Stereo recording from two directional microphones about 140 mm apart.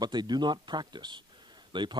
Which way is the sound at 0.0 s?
30° right (ahead or behind).